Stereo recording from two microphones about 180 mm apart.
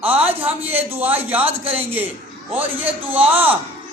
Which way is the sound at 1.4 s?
30° right (ahead or behind).